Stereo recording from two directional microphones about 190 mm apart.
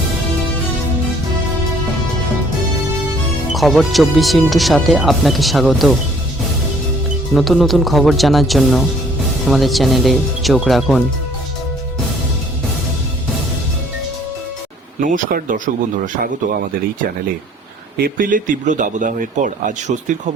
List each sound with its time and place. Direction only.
3.5 s speech: centre (ahead or behind)
7.3 s speech: centre (ahead or behind)
15.0 s speech: 45° right (ahead or behind)
17.9 s speech: 50° right (ahead or behind)